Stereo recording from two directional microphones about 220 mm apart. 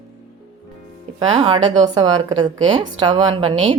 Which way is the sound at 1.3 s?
25° right (ahead or behind).